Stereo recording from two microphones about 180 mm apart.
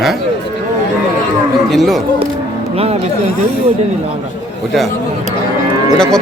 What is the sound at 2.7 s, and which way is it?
Speech, 35° right (ahead or behind).